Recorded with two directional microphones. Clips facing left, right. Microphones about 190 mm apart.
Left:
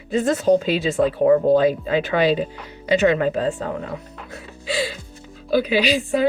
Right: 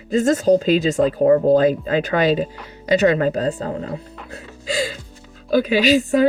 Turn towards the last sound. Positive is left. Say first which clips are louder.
# right 4 dB
turn(degrees=-45)  # may be behind; listen again after turning